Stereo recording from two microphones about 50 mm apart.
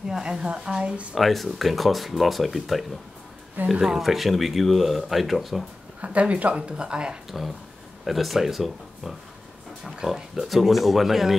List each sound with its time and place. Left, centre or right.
0.1 s a woman's voice: centre
1.1 s speech: centre
3.8 s speech: centre
5.9 s speech: right
7.2 s a woman's voice: centre